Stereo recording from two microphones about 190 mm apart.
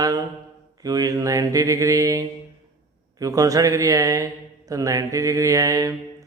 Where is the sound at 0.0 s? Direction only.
20° right (ahead or behind).